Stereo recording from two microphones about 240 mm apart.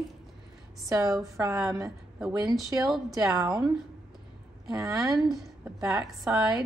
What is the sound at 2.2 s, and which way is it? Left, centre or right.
Speech, centre.